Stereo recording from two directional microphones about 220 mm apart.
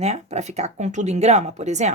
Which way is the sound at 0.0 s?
30° right (ahead or behind).